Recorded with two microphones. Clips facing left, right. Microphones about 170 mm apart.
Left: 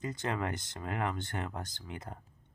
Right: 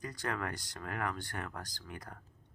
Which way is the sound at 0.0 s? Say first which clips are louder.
Left 3 dB; 20° left (ahead or behind).